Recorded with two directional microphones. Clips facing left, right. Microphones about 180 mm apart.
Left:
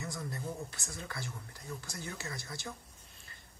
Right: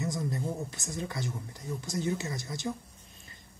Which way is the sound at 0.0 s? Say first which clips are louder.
Right 7 dB; 20° right (ahead or behind).